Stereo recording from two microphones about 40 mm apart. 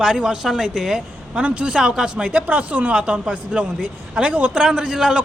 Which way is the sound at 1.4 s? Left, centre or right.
Right.